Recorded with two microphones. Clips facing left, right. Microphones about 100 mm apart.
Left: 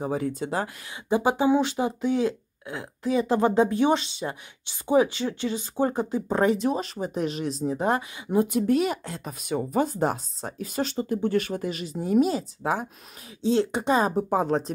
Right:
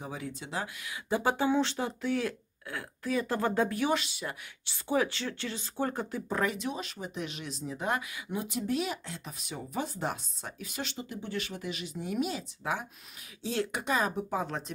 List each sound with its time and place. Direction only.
0.0 s speech: 45° left (ahead or behind)
1.0 s speech: 20° left (ahead or behind); by 8.5 s 35° left (ahead or behind)
8.5 s speech: 50° left (ahead or behind)
13.4 s speech: 25° left (ahead or behind)
14.3 s speech: 45° left (ahead or behind)